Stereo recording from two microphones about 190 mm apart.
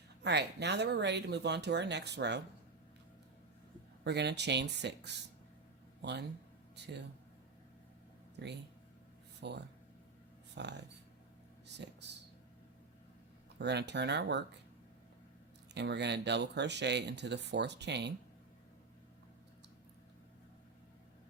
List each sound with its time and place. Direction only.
0.2 s speech: 60° right (ahead or behind)
4.0 s speech: 65° right (ahead or behind)
9.4 s speech: 65° right (ahead or behind)
13.6 s speech: 65° right (ahead or behind)
15.7 s speech: 65° right (ahead or behind)